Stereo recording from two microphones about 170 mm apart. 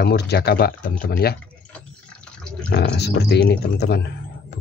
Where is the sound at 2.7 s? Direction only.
80° left.